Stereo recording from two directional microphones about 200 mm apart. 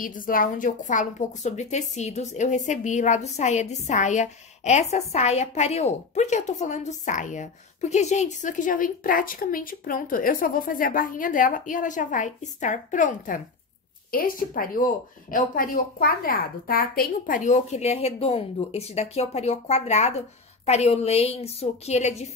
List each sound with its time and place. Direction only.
0.0 s a woman's voice: 45° left (ahead or behind)